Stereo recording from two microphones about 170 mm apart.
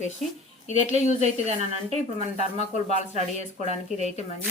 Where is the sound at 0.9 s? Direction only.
45° left (ahead or behind).